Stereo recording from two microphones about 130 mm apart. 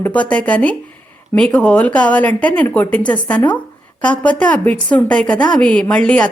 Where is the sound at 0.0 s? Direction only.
10° left (ahead or behind).